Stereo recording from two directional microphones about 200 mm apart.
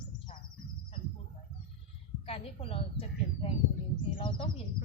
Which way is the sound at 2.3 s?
30° left (ahead or behind).